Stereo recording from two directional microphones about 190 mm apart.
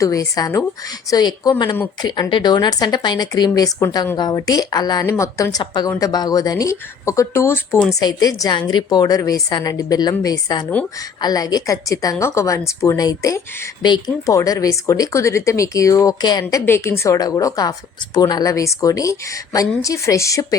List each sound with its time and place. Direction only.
0.0 s a woman's voice: 20° left (ahead or behind)